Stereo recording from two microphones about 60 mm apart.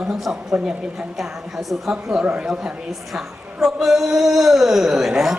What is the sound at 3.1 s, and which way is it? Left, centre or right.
Speech, centre.